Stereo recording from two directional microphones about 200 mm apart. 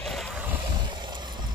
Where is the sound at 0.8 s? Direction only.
20° right (ahead or behind).